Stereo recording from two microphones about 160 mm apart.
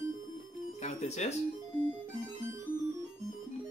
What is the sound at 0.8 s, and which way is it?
Music, 45° left (ahead or behind).